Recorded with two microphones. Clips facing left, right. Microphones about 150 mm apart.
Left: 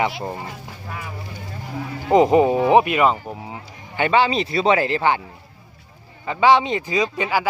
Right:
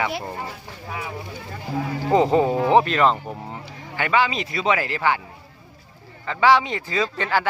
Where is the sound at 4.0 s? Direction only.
25° left (ahead or behind).